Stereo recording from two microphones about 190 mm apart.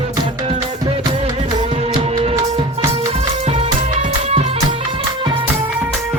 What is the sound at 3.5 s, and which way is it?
Music, 35° right (ahead or behind).